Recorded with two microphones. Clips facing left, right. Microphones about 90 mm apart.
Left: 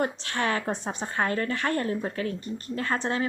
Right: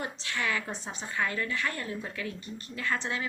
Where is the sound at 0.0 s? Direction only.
45° left (ahead or behind).